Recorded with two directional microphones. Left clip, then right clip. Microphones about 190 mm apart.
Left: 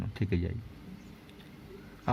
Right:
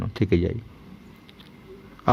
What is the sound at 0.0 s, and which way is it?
Speech, 20° right (ahead or behind).